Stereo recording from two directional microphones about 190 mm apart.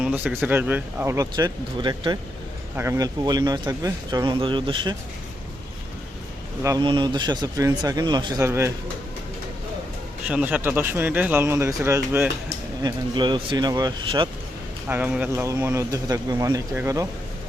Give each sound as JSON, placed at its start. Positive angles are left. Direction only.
{"t": 0.0, "sound": "speech", "side_deg": -5}
{"t": 6.6, "sound": "speech", "side_deg": -20}
{"t": 10.2, "sound": "speech", "side_deg": -5}
{"t": 12.8, "sound": "speech", "side_deg": -25}
{"t": 14.8, "sound": "speech", "side_deg": -10}